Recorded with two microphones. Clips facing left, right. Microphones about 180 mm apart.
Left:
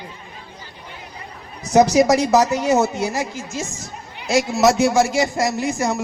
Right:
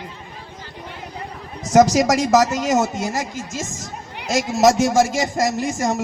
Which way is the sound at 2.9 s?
45° right (ahead or behind).